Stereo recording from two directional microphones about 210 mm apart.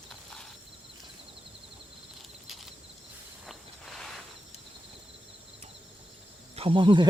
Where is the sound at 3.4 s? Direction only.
Centre (ahead or behind).